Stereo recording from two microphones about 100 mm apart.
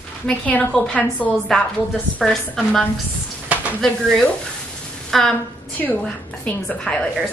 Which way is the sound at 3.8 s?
5° left (ahead or behind).